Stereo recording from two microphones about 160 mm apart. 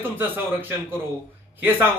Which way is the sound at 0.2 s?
10° right (ahead or behind).